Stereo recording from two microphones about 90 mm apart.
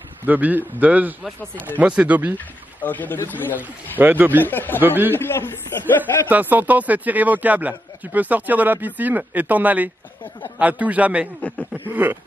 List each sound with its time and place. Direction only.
0.2 s a man's voice: 20° right (ahead or behind)
2.3 s speech: 20° left (ahead or behind)
4.0 s speech: 20° right (ahead or behind)
4.4 s speech: 20° left (ahead or behind)
4.8 s speech: 20° right (ahead or behind)
5.1 s speech: 25° left (ahead or behind)
6.2 s a man's voice: 20° right (ahead or behind)